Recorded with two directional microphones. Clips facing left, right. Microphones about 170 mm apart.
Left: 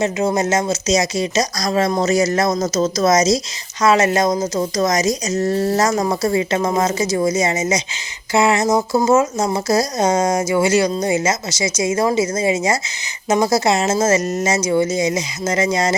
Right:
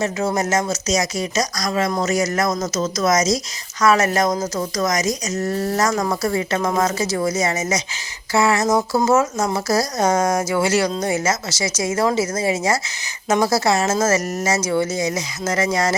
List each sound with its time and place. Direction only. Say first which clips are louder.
0.0 s speech: left 3 dB; 20° left (ahead or behind)